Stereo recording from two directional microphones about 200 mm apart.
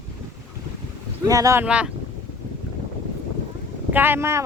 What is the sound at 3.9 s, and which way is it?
Speech, 10° right (ahead or behind).